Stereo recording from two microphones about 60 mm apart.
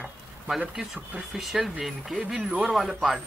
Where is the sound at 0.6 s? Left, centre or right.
Centre.